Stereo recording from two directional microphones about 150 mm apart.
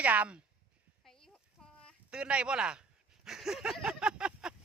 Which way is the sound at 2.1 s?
5° right (ahead or behind).